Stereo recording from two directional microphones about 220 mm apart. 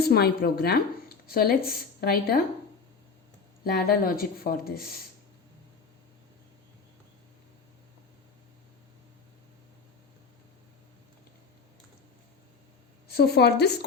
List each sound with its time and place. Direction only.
0.0 s a woman's voice: 45° left (ahead or behind)
3.6 s a woman's voice: 45° left (ahead or behind)
13.1 s a woman's voice: 45° left (ahead or behind)